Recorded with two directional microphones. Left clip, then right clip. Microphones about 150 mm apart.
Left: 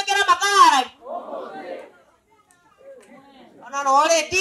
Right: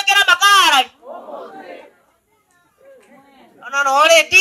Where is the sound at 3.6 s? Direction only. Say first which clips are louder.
Right 4 dB; 25° right (ahead or behind).